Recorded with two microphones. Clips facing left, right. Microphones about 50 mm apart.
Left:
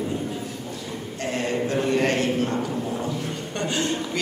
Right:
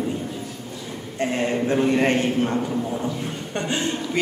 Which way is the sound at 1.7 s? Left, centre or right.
Centre.